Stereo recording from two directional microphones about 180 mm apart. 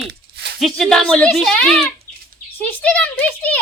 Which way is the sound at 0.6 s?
Centre (ahead or behind).